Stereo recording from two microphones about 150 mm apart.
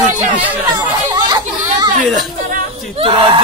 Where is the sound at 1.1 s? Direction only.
25° right (ahead or behind).